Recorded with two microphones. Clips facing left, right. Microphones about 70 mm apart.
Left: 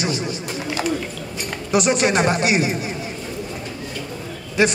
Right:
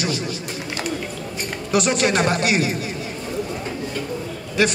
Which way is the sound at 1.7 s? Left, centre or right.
Left.